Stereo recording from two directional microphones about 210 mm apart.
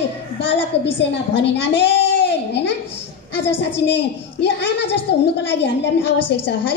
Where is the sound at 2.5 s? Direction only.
55° left (ahead or behind).